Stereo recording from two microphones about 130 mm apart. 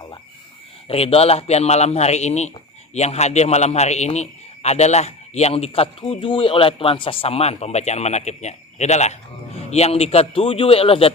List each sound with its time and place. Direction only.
0.9 s a man's voice: 50° left (ahead or behind)